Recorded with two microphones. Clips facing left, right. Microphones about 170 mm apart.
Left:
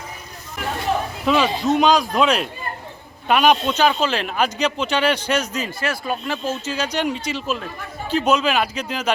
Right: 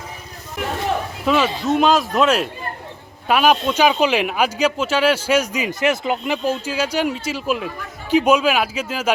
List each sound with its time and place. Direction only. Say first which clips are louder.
1.2 s a man's voice: even; centre (ahead or behind)